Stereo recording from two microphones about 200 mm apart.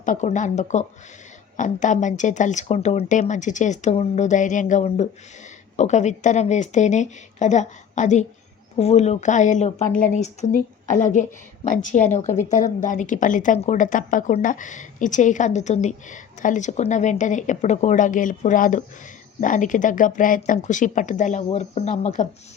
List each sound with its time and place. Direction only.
0.0 s a woman's voice: 40° left (ahead or behind)